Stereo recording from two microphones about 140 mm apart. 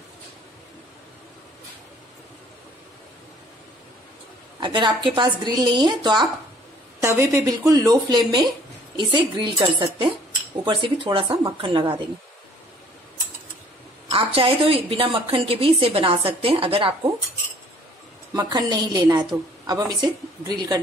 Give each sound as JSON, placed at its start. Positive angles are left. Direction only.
{"t": 4.6, "sound": "a woman's voice", "side_deg": -35}
{"t": 7.0, "sound": "a woman's voice", "side_deg": -20}
{"t": 14.1, "sound": "a woman's voice", "side_deg": -40}
{"t": 18.3, "sound": "speech", "side_deg": -30}